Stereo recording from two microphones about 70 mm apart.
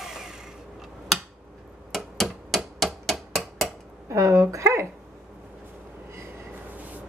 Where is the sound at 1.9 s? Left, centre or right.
Centre.